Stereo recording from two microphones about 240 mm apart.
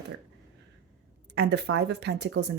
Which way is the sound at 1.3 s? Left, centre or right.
Right.